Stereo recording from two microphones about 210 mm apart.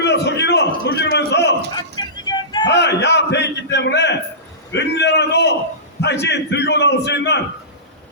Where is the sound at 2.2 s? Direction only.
20° left (ahead or behind).